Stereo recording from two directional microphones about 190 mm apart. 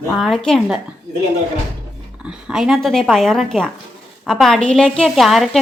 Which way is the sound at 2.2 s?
5° right (ahead or behind).